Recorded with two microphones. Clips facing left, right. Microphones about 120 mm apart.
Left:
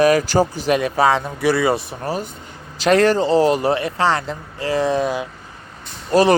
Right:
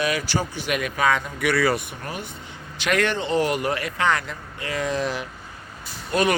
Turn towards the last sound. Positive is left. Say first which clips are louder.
# left 7 dB
turn(degrees=35)  # may be behind; listen again after turning